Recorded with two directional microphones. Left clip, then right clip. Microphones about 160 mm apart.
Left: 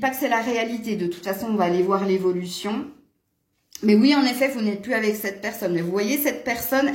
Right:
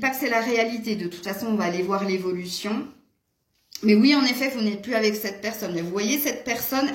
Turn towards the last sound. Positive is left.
turn(degrees=55)  # may be behind; listen again after turning